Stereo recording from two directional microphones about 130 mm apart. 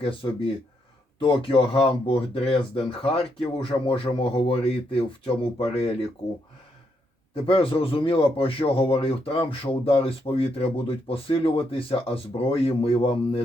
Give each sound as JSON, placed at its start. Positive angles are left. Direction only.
{"t": 0.0, "sound": "speech", "side_deg": 45}
{"t": 7.4, "sound": "speech", "side_deg": 45}